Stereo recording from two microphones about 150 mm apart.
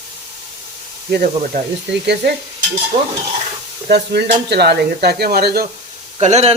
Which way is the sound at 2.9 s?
40° right (ahead or behind).